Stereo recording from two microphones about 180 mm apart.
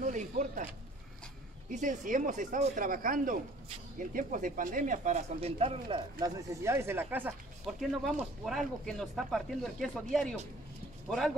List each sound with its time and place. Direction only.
0.0 s zipper: 45° right (ahead or behind)
1.7 s speech: 45° right (ahead or behind); by 6.3 s 30° right (ahead or behind)
6.6 s speech: 15° right (ahead or behind)